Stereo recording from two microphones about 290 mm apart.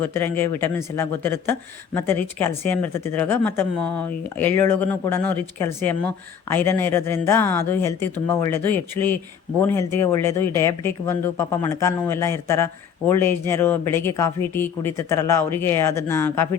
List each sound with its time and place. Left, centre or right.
0.0 s speech: centre